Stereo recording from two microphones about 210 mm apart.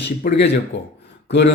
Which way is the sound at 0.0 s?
55° left (ahead or behind).